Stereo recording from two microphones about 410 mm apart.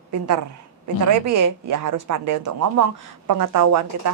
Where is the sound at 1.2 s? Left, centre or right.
Right.